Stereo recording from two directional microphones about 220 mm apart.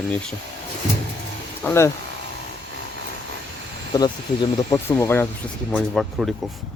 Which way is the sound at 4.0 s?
15° left (ahead or behind).